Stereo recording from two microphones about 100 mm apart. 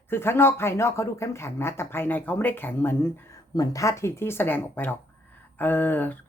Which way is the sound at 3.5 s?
35° left (ahead or behind).